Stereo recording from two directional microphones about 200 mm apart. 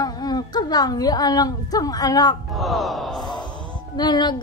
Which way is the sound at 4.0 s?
20° left (ahead or behind).